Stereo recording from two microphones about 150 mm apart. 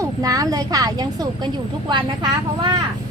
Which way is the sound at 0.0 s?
25° right (ahead or behind).